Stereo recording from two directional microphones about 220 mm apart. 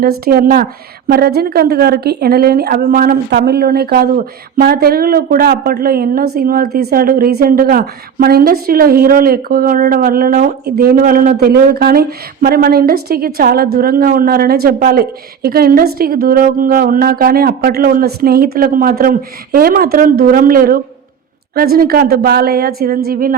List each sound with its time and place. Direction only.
0.0 s a woman's voice: 45° right (ahead or behind)